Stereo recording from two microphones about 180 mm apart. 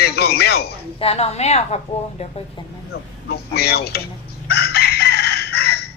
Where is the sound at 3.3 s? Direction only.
60° left (ahead or behind).